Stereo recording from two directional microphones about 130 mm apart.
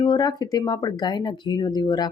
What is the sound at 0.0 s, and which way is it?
Speech, 35° left (ahead or behind).